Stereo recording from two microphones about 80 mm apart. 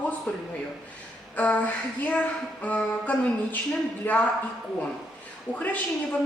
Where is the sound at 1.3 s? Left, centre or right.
Centre.